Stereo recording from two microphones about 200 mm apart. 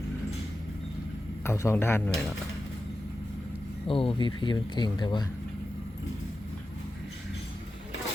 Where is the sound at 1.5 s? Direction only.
10° left (ahead or behind).